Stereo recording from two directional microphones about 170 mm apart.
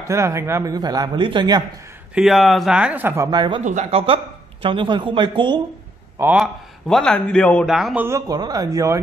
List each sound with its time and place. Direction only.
0.1 s speech: 15° right (ahead or behind)
2.1 s a man's voice: centre (ahead or behind)
3.3 s speech: 25° right (ahead or behind)
3.6 s speech: 45° right (ahead or behind)
4.0 s speech: 30° right (ahead or behind)
6.3 s a man's voice: centre (ahead or behind)
7.7 s speech: 5° right (ahead or behind)
8.3 s speech: 25° right (ahead or behind)